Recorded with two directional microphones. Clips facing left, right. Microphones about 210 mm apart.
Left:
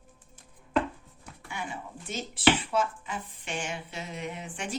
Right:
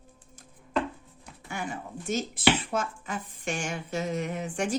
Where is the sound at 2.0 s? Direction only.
45° right (ahead or behind).